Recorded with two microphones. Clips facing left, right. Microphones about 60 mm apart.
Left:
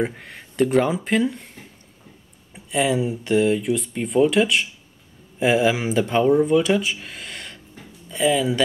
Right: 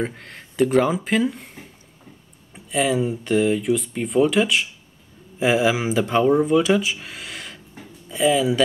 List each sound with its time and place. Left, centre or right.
0.0 s speech: centre